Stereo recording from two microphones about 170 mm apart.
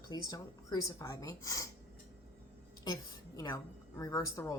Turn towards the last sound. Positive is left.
turn(degrees=15)  # may be behind; listen again after turning